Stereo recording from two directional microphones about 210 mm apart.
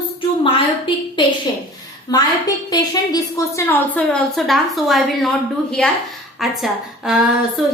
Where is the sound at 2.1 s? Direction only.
20° left (ahead or behind).